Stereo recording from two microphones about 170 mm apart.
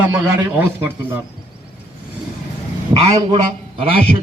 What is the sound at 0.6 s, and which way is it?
Speech, 10° right (ahead or behind).